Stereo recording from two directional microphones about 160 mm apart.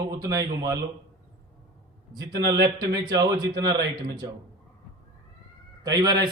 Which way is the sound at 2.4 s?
80° right.